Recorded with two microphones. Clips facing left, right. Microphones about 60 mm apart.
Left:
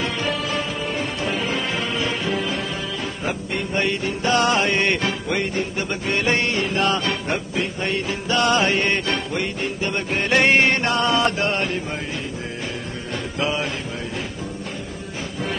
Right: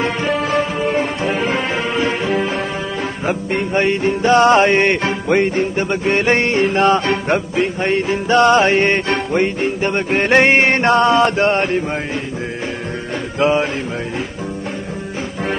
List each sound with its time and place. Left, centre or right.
0.0 s music: right
13.4 s music: right